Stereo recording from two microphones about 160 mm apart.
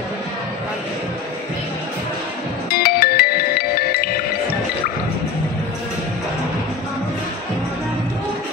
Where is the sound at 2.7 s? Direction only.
75° left (ahead or behind).